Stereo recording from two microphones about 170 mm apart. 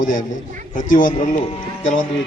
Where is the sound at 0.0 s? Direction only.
50° left (ahead or behind).